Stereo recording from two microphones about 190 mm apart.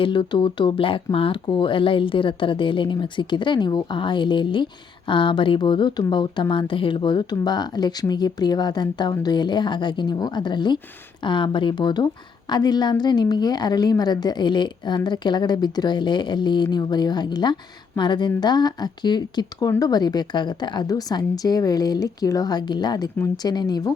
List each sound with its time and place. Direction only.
0.0 s speech: 25° left (ahead or behind)